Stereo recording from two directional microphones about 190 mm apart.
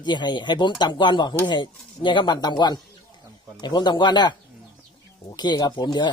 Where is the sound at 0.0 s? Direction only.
25° left (ahead or behind).